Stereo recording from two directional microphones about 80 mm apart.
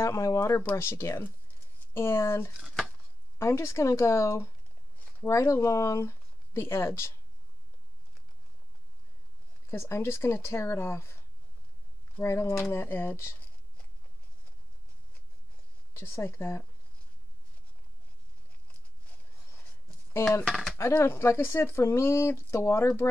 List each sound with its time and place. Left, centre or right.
0.0 s speech: left
2.6 s a sound: centre
3.3 s speech: left
9.7 s speech: left
15.9 s speech: left
20.4 s speech: centre
20.7 s speech: left